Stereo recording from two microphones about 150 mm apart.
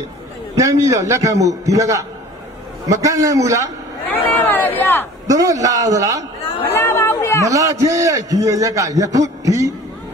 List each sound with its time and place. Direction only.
0.6 s a man's voice: 20° right (ahead or behind)
4.1 s a sound: 15° left (ahead or behind)
5.2 s a man's voice: 20° right (ahead or behind)
6.7 s chatter: 15° left (ahead or behind)
7.4 s a man's voice: 20° right (ahead or behind)